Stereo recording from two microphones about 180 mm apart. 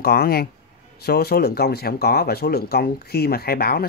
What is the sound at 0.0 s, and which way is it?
Speech, 60° left (ahead or behind).